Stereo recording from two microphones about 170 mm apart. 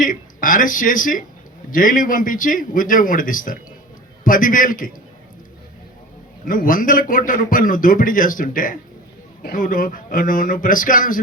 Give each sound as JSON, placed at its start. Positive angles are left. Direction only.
{"t": 0.0, "sound": "a man's voice", "side_deg": 55}
{"t": 6.4, "sound": "a man's voice", "side_deg": 55}